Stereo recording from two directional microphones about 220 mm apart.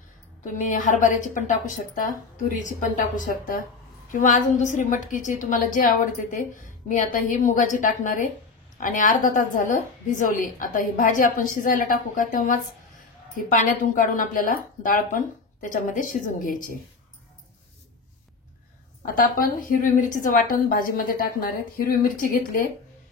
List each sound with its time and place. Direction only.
0.6 s a woman's voice: 35° left (ahead or behind)
2.6 s a woman's voice: 35° left (ahead or behind)
19.1 s a woman's voice: 40° left (ahead or behind)